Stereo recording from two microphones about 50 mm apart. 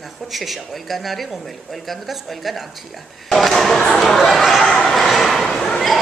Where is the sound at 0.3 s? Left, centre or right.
Centre.